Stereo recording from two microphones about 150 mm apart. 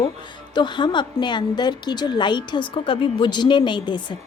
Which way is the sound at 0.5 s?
30° left (ahead or behind).